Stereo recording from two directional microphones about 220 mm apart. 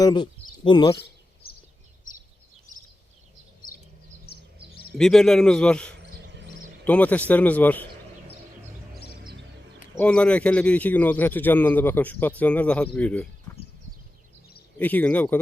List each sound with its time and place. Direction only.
0.0 s speech: 20° left (ahead or behind)
2.7 s a sound: 35° left (ahead or behind)
4.3 s music: 45° left (ahead or behind)
4.9 s a man's voice: centre (ahead or behind)
9.9 s a man's voice: 5° left (ahead or behind)
13.5 s a sound: 10° left (ahead or behind)
14.8 s a man's voice: 10° left (ahead or behind)